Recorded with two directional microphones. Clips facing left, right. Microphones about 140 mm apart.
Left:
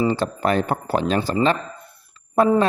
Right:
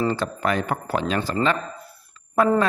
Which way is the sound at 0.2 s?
30° left (ahead or behind).